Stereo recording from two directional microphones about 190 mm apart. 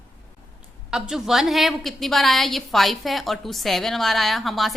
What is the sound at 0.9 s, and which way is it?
A woman's voice, centre (ahead or behind).